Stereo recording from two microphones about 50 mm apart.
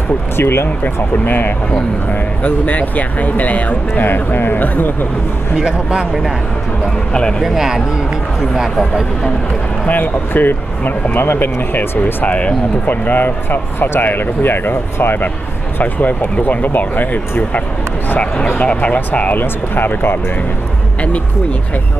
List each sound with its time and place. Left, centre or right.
0.4 s speech: left
4.0 s speech: left
5.6 s speech: centre
7.2 s speech: centre
7.4 s speech: centre
9.8 s speech: left
12.0 s speech: left
15.8 s speech: left
18.5 s speech: left
19.4 s speech: left